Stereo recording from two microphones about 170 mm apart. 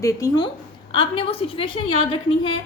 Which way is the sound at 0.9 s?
30° left (ahead or behind).